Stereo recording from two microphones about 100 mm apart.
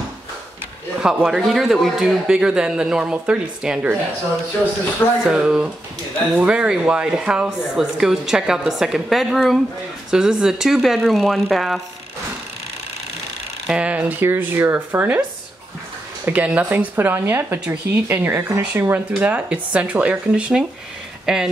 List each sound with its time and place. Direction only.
1.0 s speech: 5° right (ahead or behind)
5.2 s a woman's voice: 5° right (ahead or behind)
13.7 s speech: 10° right (ahead or behind)
16.3 s a woman's voice: 15° right (ahead or behind)